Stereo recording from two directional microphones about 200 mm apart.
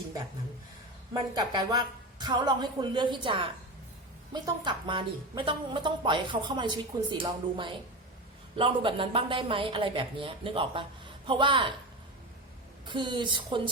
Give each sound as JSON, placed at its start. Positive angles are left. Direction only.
{"t": 1.1, "sound": "speech", "side_deg": -20}
{"t": 12.8, "sound": "speech", "side_deg": -25}